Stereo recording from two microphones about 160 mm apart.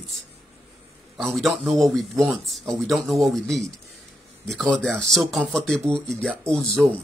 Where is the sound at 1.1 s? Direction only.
Centre (ahead or behind).